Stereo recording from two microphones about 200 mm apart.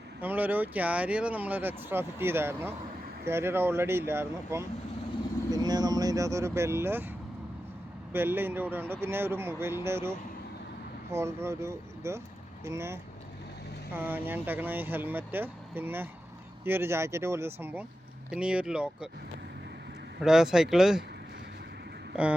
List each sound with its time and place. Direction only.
0.2 s speech: 10° right (ahead or behind)
8.1 s speech: 10° right (ahead or behind)
20.2 s speech: 5° right (ahead or behind)
22.1 s speech: 5° right (ahead or behind)